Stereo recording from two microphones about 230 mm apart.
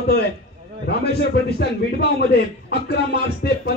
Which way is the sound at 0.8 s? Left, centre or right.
Left.